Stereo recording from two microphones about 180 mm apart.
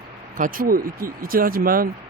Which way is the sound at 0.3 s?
50° right (ahead or behind).